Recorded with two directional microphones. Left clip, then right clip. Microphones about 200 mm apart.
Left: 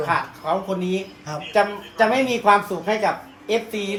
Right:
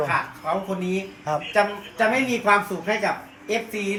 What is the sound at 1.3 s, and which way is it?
Speech, centre (ahead or behind).